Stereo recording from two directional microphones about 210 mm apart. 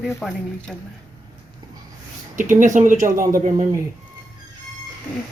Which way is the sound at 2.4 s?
35° right (ahead or behind).